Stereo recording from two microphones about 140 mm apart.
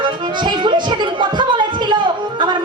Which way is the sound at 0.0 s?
35° right (ahead or behind).